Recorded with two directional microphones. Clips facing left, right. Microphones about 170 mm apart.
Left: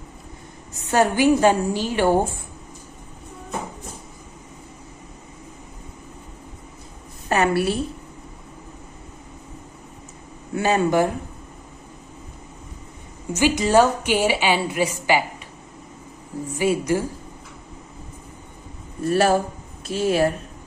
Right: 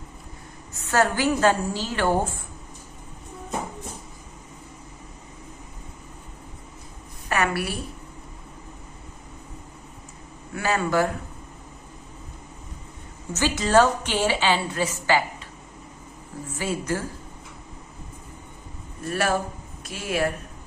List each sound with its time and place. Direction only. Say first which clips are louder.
0.8 s a woman's voice: left 5 dB; 15° left (ahead or behind)
7.2 s speech: left 6 dB; 25° left (ahead or behind)
10.5 s speech: left 4 dB; 20° left (ahead or behind)
13.3 s a woman's voice: left 3 dB; 15° left (ahead or behind)
16.5 s a woman's voice: left 7 dB; 15° left (ahead or behind)
19.0 s speech: left 6 dB; 30° left (ahead or behind)